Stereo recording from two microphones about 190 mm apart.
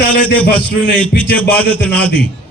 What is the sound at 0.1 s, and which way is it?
A man's voice, 10° left (ahead or behind).